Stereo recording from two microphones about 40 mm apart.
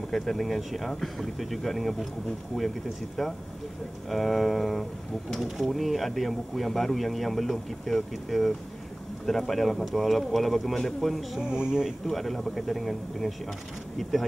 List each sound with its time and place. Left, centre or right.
0.1 s speech: centre
11.4 s speech: right
12.1 s speech: centre